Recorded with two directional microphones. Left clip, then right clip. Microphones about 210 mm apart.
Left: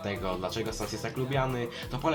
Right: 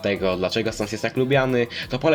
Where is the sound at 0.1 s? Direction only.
40° right (ahead or behind).